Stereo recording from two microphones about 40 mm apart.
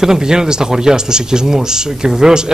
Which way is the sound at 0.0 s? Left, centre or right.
Centre.